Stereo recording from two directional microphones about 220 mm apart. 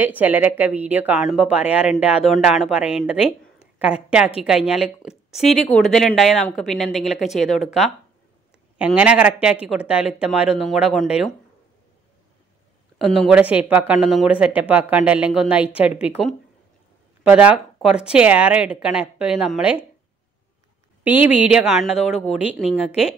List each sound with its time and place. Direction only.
0.0 s speech: 5° right (ahead or behind)
13.0 s speech: centre (ahead or behind)
21.0 s speech: 10° right (ahead or behind)
22.8 s speech: 5° right (ahead or behind)